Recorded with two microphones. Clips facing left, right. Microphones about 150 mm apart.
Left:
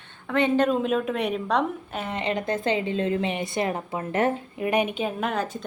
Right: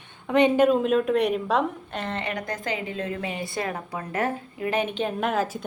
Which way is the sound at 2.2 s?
25° left (ahead or behind).